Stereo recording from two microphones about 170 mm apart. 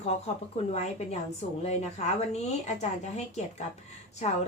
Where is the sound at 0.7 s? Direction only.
40° left (ahead or behind).